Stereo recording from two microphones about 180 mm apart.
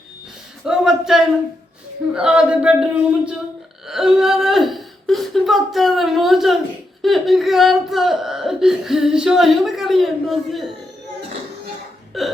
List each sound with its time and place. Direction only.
0.6 s a sound: 5° right (ahead or behind)
2.1 s speech: 5° right (ahead or behind)
12.1 s speech: centre (ahead or behind)